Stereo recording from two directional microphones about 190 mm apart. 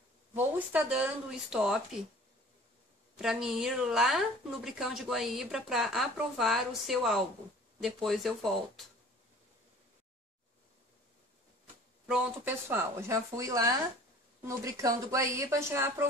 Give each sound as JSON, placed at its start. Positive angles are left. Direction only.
{"t": 0.3, "sound": "speech", "side_deg": -10}
{"t": 3.2, "sound": "speech", "side_deg": -5}
{"t": 12.1, "sound": "speech", "side_deg": -10}